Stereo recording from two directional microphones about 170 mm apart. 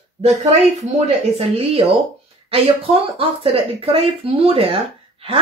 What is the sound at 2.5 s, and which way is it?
A woman's voice, 35° right (ahead or behind).